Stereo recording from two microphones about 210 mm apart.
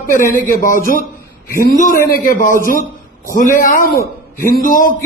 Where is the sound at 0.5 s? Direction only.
40° left (ahead or behind).